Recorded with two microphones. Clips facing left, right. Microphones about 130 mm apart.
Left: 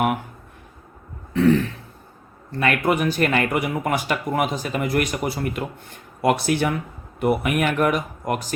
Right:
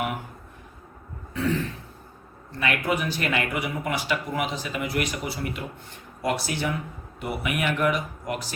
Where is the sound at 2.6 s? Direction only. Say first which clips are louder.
Left 5 dB; 55° left (ahead or behind).